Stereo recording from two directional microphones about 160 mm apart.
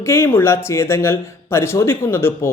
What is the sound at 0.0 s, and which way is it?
Speech, 15° left (ahead or behind).